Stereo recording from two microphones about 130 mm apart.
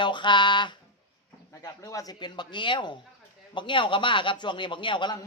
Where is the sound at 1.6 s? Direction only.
25° left (ahead or behind).